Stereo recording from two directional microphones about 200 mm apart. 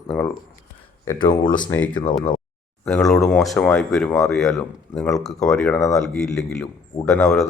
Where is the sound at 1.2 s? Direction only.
40° left (ahead or behind).